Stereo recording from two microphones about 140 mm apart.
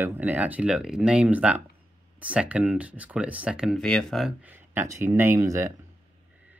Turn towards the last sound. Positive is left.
turn(degrees=-20)  # may be behind; listen again after turning